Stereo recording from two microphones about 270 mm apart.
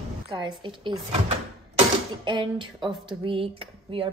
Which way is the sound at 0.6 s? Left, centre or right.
Centre.